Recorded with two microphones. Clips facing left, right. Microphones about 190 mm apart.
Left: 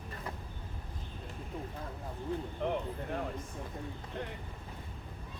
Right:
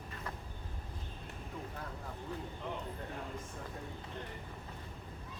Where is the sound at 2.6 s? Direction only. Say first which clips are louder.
Left 10 dB; 65° left (ahead or behind).